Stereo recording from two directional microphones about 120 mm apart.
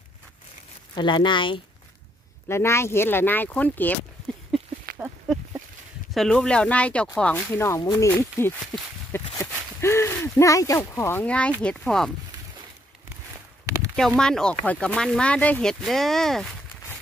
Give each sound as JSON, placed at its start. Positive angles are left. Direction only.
{"t": 0.9, "sound": "speech", "side_deg": 40}
{"t": 2.4, "sound": "speech", "side_deg": 20}
{"t": 4.5, "sound": "a sound", "side_deg": 0}
{"t": 6.1, "sound": "speech", "side_deg": 5}
{"t": 7.5, "sound": "speech", "side_deg": 25}
{"t": 9.4, "sound": "a sound", "side_deg": 20}
{"t": 11.2, "sound": "speech", "side_deg": 10}
{"t": 13.9, "sound": "speech", "side_deg": 5}